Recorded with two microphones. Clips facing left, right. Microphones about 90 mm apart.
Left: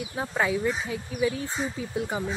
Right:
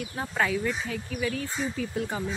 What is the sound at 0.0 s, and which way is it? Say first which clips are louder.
Speech: left 1 dB; 15° left (ahead or behind).